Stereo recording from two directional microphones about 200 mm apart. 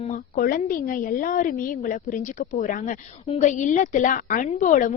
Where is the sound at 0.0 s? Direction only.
40° left (ahead or behind).